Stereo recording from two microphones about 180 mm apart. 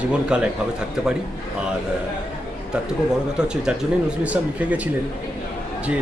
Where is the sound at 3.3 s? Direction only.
5° right (ahead or behind).